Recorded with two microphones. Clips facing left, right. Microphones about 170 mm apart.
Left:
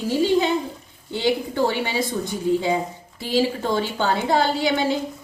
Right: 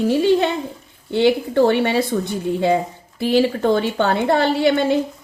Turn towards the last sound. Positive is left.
turn(degrees=-60)  # may be behind; listen again after turning